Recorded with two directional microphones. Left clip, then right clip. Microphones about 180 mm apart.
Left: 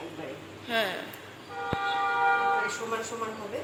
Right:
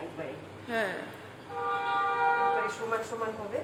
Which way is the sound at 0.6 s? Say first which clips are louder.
Left 3 dB; 15° right (ahead or behind).